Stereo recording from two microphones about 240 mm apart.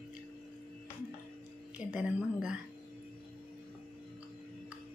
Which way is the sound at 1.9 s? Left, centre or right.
Centre.